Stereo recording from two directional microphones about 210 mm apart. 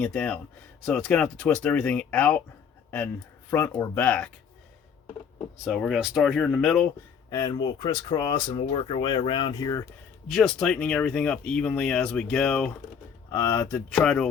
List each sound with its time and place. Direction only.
0.0 s speech: 5° left (ahead or behind)
3.5 s speech: 10° left (ahead or behind)
5.6 s speech: centre (ahead or behind)
7.3 s speech: 15° left (ahead or behind)
10.2 s speech: centre (ahead or behind)